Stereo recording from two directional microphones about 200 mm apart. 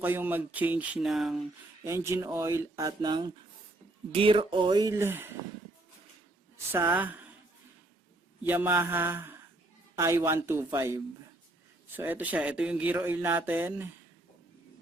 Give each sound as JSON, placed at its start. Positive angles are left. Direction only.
{"t": 0.0, "sound": "speech", "side_deg": -10}
{"t": 1.8, "sound": "speech", "side_deg": -15}
{"t": 6.9, "sound": "speech", "side_deg": -10}
{"t": 8.4, "sound": "speech", "side_deg": -10}